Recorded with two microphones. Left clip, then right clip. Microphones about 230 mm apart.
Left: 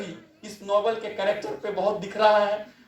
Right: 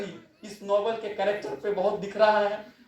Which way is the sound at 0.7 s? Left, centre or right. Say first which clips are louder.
Left 2 dB; left.